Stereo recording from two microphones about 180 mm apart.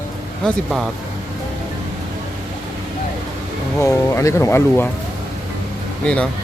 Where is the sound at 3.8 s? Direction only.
15° left (ahead or behind).